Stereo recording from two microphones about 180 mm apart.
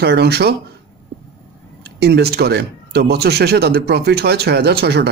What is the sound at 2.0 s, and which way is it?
Speech, 65° right (ahead or behind).